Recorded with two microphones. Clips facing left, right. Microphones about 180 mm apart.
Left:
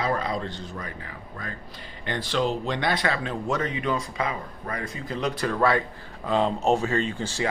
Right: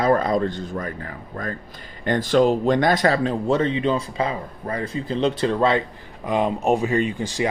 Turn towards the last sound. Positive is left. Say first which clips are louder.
# right 4 dB
turn(degrees=-15)  # may be behind; listen again after turning